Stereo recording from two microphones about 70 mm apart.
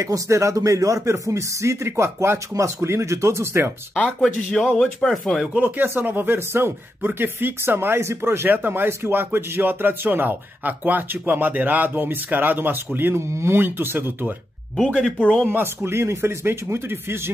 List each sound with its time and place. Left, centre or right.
0.0 s speech: right
3.9 s speech: centre
5.5 s speech: right
15.1 s speech: centre
15.4 s speech: right